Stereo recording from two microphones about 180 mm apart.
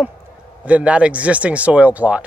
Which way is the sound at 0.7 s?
5° right (ahead or behind).